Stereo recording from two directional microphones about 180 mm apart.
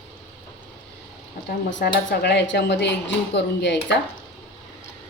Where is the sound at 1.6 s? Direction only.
80° left.